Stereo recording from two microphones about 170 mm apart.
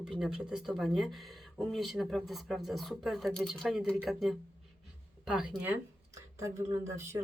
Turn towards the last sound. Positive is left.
turn(degrees=-15)  # may be behind; listen again after turning